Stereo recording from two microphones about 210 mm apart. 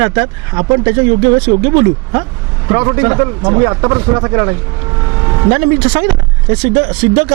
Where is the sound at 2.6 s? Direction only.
25° right (ahead or behind).